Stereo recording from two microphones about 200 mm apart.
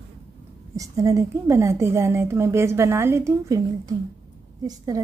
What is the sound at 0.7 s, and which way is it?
A woman's voice, 15° right (ahead or behind).